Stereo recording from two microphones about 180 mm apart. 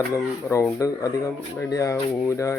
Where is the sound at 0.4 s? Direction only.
10° left (ahead or behind).